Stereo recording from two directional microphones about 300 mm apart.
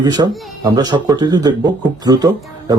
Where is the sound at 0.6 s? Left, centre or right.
Centre.